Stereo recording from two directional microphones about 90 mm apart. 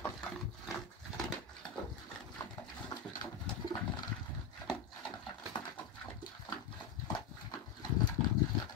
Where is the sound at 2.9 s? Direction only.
50° left (ahead or behind).